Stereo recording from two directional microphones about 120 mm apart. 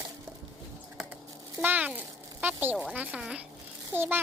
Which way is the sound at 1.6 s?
15° right (ahead or behind).